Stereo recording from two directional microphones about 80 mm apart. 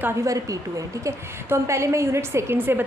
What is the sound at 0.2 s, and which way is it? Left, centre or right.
A woman's voice, right.